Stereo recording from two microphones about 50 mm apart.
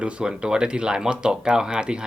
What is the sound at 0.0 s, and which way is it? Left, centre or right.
Speech, right.